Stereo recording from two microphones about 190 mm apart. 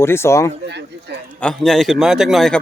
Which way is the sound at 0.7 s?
65° right (ahead or behind).